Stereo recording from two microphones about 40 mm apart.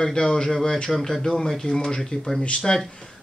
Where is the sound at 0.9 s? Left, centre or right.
Centre.